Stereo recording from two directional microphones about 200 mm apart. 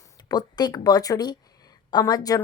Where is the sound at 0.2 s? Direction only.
20° left (ahead or behind).